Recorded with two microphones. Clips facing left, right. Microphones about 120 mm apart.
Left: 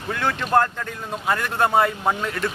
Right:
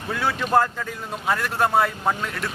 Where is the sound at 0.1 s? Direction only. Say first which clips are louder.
Even; 5° right (ahead or behind).